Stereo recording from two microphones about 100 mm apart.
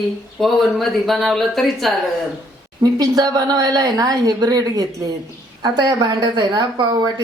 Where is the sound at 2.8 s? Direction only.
40° right (ahead or behind).